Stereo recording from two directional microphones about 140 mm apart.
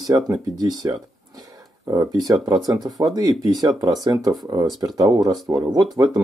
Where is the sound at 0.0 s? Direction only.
25° right (ahead or behind).